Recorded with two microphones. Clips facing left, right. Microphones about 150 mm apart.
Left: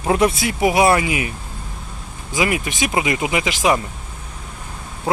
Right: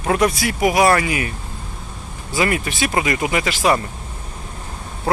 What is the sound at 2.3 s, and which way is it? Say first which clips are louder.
Speech: even; 10° left (ahead or behind).